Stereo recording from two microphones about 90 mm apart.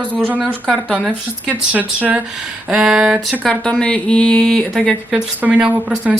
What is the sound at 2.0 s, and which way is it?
A woman's voice, 15° right (ahead or behind).